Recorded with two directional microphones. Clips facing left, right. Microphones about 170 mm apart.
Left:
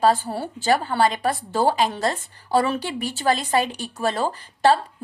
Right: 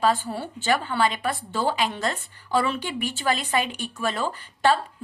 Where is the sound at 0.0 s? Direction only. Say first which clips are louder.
Left 4 dB; 40° left (ahead or behind).